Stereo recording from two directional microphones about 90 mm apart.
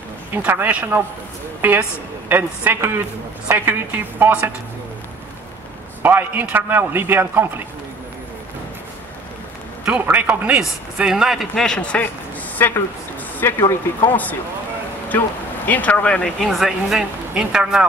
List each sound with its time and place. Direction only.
0.3 s a woman's voice: 25° right (ahead or behind)
6.0 s a woman's voice: 20° right (ahead or behind)
9.8 s a man's voice: 15° right (ahead or behind); by 16.3 s 15° left (ahead or behind)
16.3 s speech: centre (ahead or behind)